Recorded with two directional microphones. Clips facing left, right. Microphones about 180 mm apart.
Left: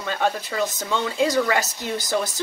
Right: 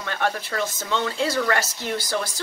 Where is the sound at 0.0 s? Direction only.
15° left (ahead or behind).